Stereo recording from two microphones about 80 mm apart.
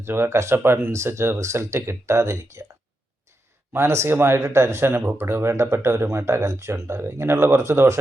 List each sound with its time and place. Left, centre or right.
0.0 s speech: right
3.7 s speech: right